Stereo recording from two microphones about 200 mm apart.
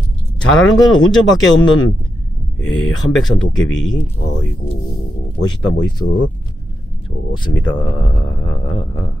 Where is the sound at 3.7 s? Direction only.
20° left (ahead or behind).